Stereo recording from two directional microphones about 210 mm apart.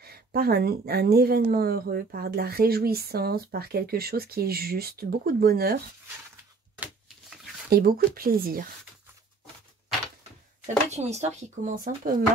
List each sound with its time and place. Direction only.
0.0 s speech: 45° right (ahead or behind)
7.7 s speech: 45° right (ahead or behind)
10.9 s speech: 30° right (ahead or behind)